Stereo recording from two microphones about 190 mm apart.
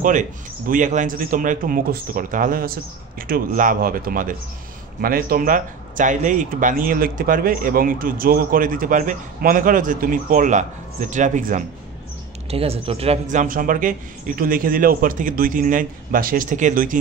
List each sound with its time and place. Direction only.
0.0 s speech: 45° right (ahead or behind)
12.4 s speech: 30° right (ahead or behind)